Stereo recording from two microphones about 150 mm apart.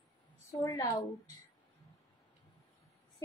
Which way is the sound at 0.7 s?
25° left (ahead or behind).